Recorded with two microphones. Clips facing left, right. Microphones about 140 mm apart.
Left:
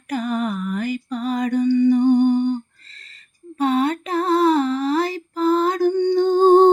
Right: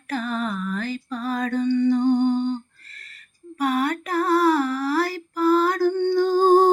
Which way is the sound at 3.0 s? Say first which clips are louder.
Left 1 dB; 25° left (ahead or behind).